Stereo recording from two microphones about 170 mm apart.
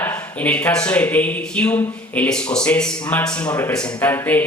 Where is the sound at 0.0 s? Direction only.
10° left (ahead or behind).